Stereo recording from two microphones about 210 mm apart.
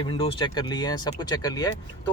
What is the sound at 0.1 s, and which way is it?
Speech, 25° left (ahead or behind).